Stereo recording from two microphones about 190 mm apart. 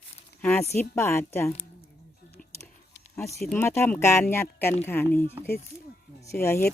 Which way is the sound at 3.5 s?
15° left (ahead or behind).